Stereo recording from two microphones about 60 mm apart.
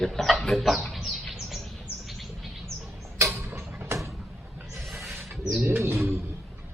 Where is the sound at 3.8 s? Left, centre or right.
Right.